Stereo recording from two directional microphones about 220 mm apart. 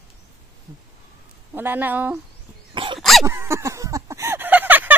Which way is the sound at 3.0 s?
Centre (ahead or behind).